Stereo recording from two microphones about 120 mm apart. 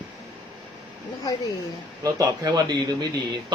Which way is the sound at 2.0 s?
30° right (ahead or behind).